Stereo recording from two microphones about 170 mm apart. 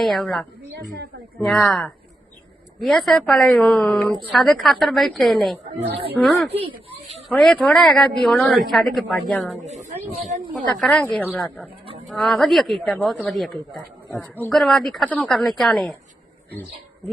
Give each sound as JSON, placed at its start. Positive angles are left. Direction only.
{"t": 0.0, "sound": "a woman's voice", "side_deg": 0}
{"t": 6.5, "sound": "speech", "side_deg": -35}
{"t": 7.3, "sound": "a woman's voice", "side_deg": 5}
{"t": 9.6, "sound": "speech", "side_deg": -40}
{"t": 10.8, "sound": "a woman's voice", "side_deg": 5}